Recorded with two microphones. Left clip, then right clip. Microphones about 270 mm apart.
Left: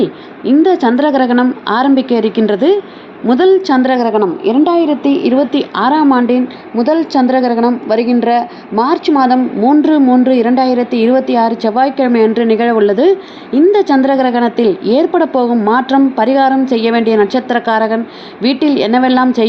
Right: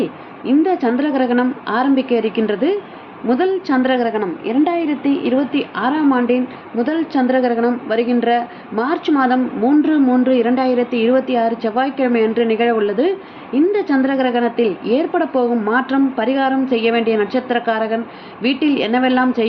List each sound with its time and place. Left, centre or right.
0.6 s a woman's voice: left
3.2 s a woman's voice: left